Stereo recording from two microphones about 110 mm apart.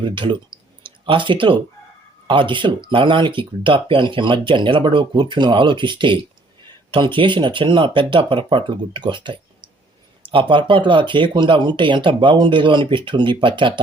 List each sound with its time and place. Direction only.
0.0 s speech: 50° right (ahead or behind)